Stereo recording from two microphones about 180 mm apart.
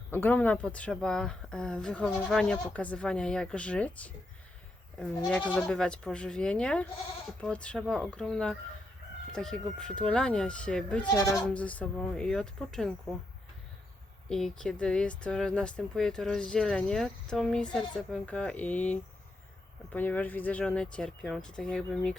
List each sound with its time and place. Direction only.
0.1 s speech: 10° left (ahead or behind)
11.1 s speech: 20° left (ahead or behind)
11.4 s speech: 5° left (ahead or behind)
14.3 s speech: 5° left (ahead or behind)